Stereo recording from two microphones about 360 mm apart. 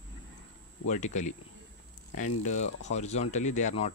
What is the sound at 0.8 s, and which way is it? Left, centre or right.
Speech, centre.